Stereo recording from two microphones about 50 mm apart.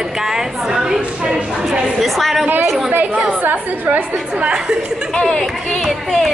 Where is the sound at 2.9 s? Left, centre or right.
Right.